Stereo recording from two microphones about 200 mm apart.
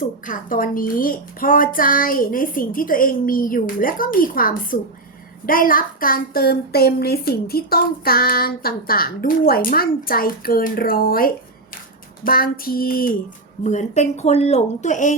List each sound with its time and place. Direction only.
0.0 s speech: 45° left (ahead or behind)